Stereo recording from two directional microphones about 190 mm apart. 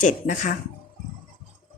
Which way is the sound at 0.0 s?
40° left (ahead or behind).